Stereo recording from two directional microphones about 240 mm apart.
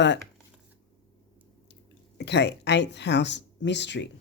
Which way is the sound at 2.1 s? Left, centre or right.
Left.